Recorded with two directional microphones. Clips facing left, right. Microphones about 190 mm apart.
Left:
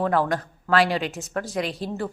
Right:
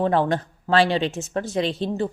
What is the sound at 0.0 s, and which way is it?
A woman's voice, 25° right (ahead or behind).